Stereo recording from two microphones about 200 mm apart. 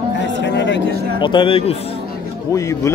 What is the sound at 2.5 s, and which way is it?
Speech, 15° left (ahead or behind).